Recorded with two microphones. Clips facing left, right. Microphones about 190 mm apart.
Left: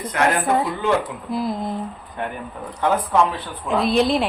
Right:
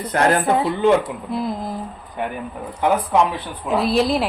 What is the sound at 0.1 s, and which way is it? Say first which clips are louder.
Speech: right 2 dB; 35° right (ahead or behind).